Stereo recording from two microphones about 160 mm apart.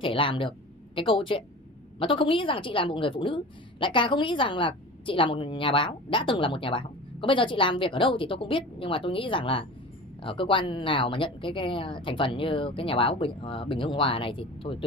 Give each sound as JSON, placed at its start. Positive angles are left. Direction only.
{"t": 0.0, "sound": "a woman's voice", "side_deg": 35}